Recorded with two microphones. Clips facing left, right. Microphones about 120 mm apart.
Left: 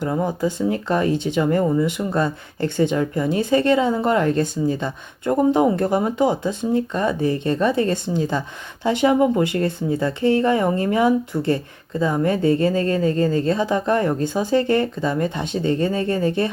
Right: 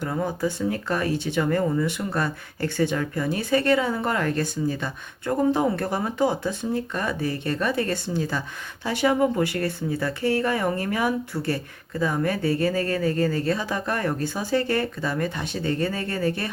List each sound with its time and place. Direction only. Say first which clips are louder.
0.0 s speech: left 4 dB; 20° left (ahead or behind)